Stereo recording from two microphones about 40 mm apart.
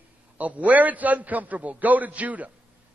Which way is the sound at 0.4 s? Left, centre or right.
Right.